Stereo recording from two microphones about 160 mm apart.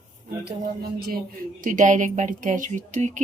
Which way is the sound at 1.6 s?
55° right (ahead or behind).